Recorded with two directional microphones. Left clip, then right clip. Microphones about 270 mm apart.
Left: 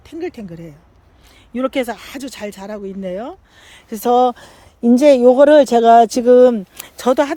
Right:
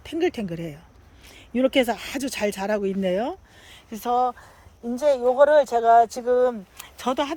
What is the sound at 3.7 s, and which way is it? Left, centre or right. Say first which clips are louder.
Speech: left 9 dB; centre.